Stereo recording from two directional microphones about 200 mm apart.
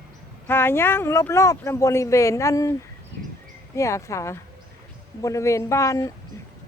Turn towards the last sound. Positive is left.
turn(degrees=15)  # may be behind; listen again after turning